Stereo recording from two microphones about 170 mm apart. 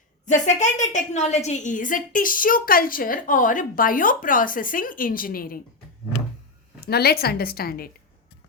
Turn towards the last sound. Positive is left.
turn(degrees=60)  # may be behind; listen again after turning